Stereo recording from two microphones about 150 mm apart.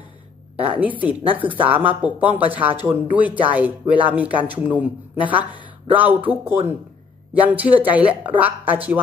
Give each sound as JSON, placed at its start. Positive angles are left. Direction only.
{"t": 0.7, "sound": "a man's voice", "side_deg": -10}
{"t": 1.2, "sound": "speech", "side_deg": -35}
{"t": 1.7, "sound": "a man's voice", "side_deg": -10}